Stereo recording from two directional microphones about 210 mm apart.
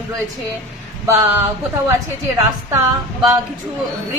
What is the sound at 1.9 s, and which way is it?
Speech, 15° right (ahead or behind).